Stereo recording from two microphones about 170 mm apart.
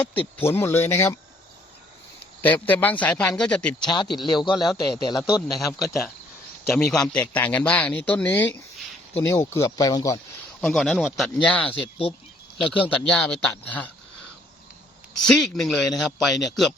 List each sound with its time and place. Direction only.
0.1 s a man's voice: 10° left (ahead or behind)
2.4 s a man's voice: 10° left (ahead or behind)
3.8 s speech: 25° left (ahead or behind)
5.5 s a man's voice: centre (ahead or behind); by 10.2 s 20° left (ahead or behind)
10.6 s a man's voice: centre (ahead or behind)
11.8 s speech: 30° left (ahead or behind)
13.1 s speech: 5° left (ahead or behind)
15.3 s speech: 5° left (ahead or behind)